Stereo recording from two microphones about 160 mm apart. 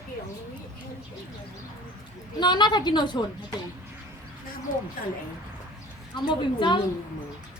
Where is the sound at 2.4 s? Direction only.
30° left (ahead or behind).